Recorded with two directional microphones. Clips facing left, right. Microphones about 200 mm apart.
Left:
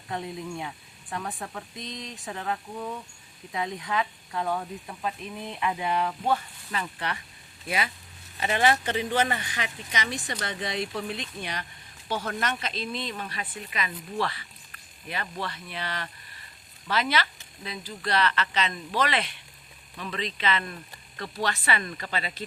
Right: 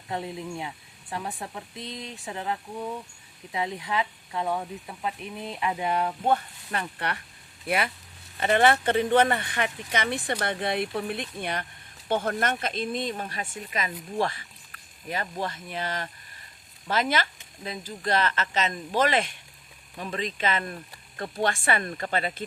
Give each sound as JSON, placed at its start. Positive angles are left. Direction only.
{"t": 0.1, "sound": "speech", "side_deg": -30}
{"t": 2.7, "sound": "speech", "side_deg": -15}
{"t": 3.8, "sound": "speech", "side_deg": -25}
{"t": 4.9, "sound": "speech", "side_deg": -10}
{"t": 5.5, "sound": "speech", "side_deg": -35}
{"t": 8.4, "sound": "speech", "side_deg": -55}